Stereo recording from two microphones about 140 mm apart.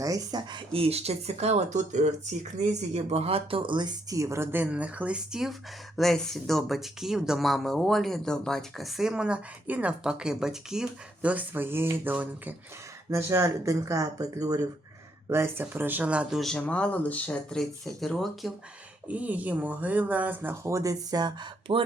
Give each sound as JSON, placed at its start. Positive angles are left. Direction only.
{"t": 0.0, "sound": "speech", "side_deg": -25}
{"t": 0.7, "sound": "speech", "side_deg": -45}
{"t": 19.0, "sound": "speech", "side_deg": -10}